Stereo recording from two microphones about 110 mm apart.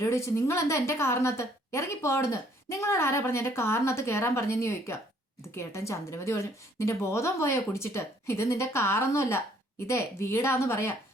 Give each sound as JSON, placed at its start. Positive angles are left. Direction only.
{"t": 0.0, "sound": "a woman's voice", "side_deg": 25}